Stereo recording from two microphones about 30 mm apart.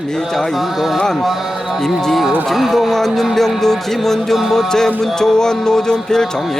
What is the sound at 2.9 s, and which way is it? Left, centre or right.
Music, centre.